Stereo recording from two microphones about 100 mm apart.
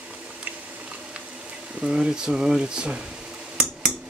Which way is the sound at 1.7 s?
10° right (ahead or behind).